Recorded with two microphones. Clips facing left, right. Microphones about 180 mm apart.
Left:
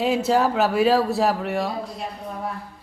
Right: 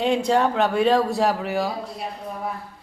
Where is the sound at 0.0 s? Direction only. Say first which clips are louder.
Even; 5° left (ahead or behind).